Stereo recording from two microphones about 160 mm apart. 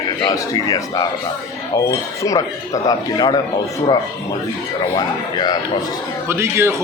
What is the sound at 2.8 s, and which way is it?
Speech, 25° left (ahead or behind).